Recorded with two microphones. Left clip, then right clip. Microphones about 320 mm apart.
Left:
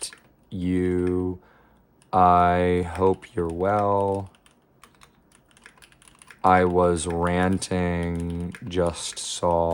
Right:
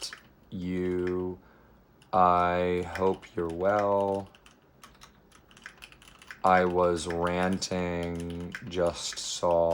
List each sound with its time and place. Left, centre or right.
0.5 s speech: left
2.0 s speech: left
6.4 s speech: left